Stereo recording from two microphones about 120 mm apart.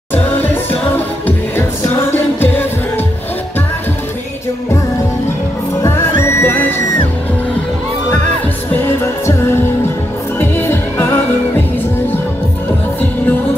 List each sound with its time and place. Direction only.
0.1 s music: 15° left (ahead or behind)
6.2 s music: 20° left (ahead or behind)
8.8 s music: 20° left (ahead or behind)
10.4 s heart sounds: 15° left (ahead or behind)